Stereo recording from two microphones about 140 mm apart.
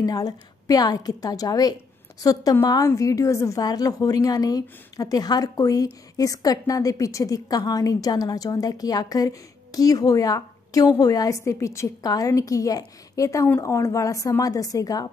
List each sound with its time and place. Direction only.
0.0 s a woman's voice: 25° left (ahead or behind)